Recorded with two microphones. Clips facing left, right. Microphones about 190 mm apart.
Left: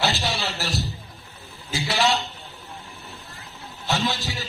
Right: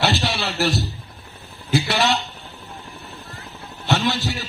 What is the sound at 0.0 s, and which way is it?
Music, 65° right (ahead or behind).